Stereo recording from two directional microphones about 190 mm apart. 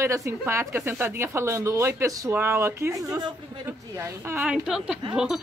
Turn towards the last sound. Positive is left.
turn(degrees=-5)  # may be behind; listen again after turning